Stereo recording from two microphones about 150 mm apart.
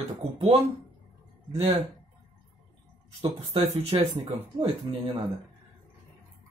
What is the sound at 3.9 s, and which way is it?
Speech, 35° right (ahead or behind).